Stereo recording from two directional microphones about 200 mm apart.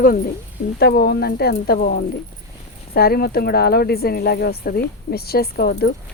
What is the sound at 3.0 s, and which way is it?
Speech, 50° left (ahead or behind).